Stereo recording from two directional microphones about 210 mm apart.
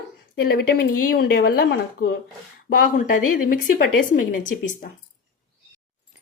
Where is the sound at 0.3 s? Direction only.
45° left (ahead or behind).